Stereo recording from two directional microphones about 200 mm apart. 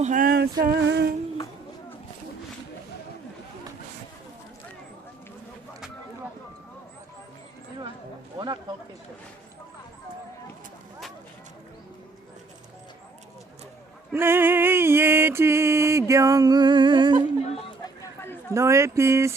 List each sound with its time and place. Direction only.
0.0 s music: 40° right (ahead or behind); by 1.1 s 60° right (ahead or behind)
14.1 s mantra: 10° right (ahead or behind)
17.8 s a sound: 10° left (ahead or behind)
18.5 s mantra: 15° right (ahead or behind)